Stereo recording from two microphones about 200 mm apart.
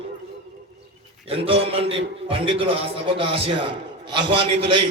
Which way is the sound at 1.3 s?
30° right (ahead or behind).